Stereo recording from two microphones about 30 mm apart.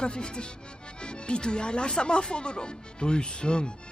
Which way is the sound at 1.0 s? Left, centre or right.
Left.